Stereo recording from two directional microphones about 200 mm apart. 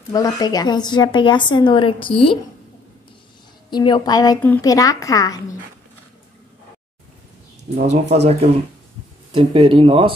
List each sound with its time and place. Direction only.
0.1 s a woman's voice: 20° left (ahead or behind)
3.7 s a woman's voice: 20° left (ahead or behind)
7.7 s speech: 35° right (ahead or behind)